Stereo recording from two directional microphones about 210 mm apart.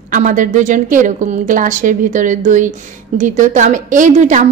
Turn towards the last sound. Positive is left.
turn(degrees=-35)  # may be behind; listen again after turning